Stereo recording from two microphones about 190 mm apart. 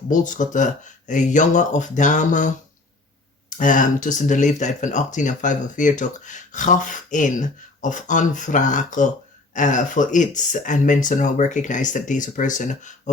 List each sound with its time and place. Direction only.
0.1 s speech: 40° left (ahead or behind)
3.6 s speech: 45° left (ahead or behind)